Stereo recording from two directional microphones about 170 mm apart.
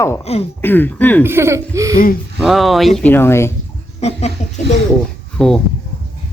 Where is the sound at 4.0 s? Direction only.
40° left (ahead or behind).